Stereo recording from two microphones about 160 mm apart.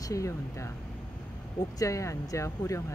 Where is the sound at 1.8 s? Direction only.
20° left (ahead or behind).